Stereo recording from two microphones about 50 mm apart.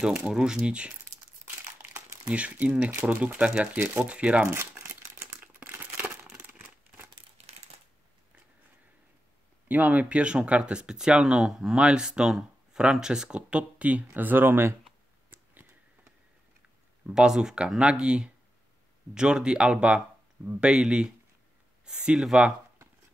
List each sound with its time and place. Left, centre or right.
0.0 s speech: centre
2.3 s speech: right
4.5 s crumpling: right
6.3 s a sound: right
9.7 s speech: right
14.1 s speech: right
17.1 s speech: centre